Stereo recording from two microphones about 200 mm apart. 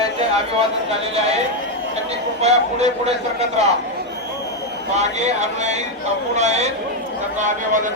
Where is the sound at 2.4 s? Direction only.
35° right (ahead or behind).